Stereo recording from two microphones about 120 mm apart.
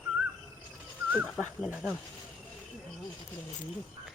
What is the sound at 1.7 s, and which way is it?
Speech, 5° right (ahead or behind).